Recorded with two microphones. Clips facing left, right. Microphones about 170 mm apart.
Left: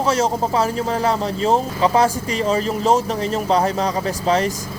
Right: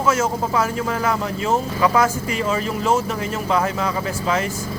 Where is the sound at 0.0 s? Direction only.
35° left (ahead or behind).